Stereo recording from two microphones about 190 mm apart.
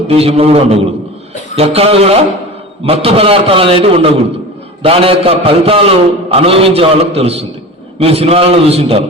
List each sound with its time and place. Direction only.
0.1 s a man's voice: 30° right (ahead or behind)